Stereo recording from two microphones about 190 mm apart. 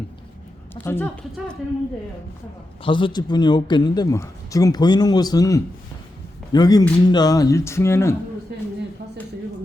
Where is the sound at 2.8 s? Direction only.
25° left (ahead or behind).